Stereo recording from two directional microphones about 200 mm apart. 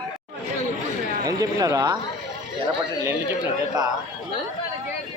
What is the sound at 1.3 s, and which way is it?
Speech, 20° right (ahead or behind).